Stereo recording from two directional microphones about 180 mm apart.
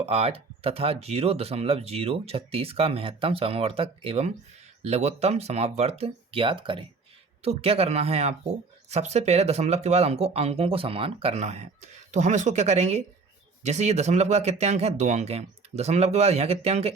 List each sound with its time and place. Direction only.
0.0 s speech: 35° right (ahead or behind)